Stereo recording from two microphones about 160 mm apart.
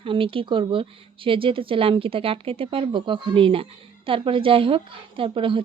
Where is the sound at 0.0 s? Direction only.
35° right (ahead or behind).